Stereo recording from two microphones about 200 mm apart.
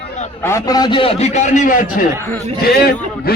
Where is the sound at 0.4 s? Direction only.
15° left (ahead or behind).